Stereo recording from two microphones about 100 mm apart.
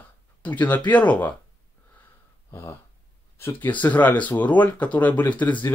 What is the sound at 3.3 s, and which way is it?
Speech, 20° left (ahead or behind).